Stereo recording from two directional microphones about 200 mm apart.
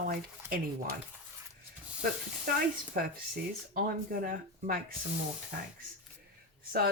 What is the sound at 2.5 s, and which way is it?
Speech, 50° right (ahead or behind).